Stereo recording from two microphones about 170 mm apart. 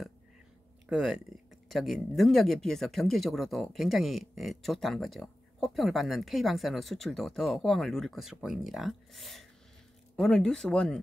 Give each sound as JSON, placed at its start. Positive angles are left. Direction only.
{"t": 0.8, "sound": "speech", "side_deg": -5}